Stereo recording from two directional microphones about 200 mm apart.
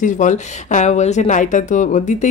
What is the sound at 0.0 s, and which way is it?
Speech, 40° left (ahead or behind).